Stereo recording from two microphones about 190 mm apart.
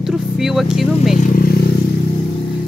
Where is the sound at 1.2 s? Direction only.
50° left (ahead or behind).